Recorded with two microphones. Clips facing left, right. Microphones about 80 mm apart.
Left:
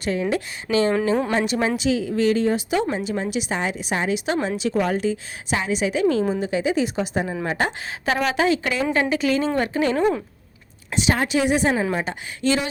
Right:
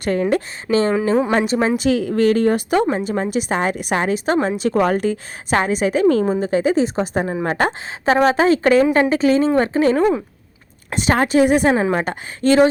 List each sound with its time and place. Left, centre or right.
0.0 s a woman's voice: right
2.9 s a woman's voice: right
10.9 s a woman's voice: right